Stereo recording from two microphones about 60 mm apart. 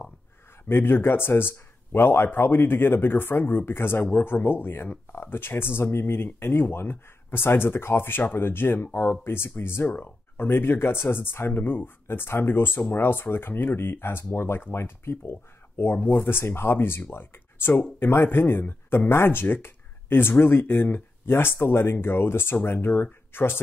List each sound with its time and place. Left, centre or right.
0.7 s speech: left